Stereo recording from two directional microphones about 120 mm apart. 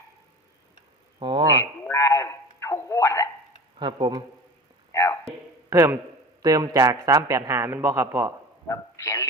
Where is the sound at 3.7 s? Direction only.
40° right (ahead or behind).